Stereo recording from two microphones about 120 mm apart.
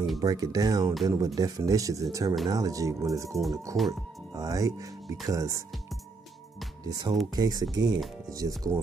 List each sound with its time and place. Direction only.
0.2 s speech: 30° right (ahead or behind)
6.8 s speech: 30° right (ahead or behind)